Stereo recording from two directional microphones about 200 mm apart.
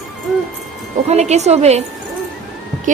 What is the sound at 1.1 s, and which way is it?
Speech, 35° right (ahead or behind).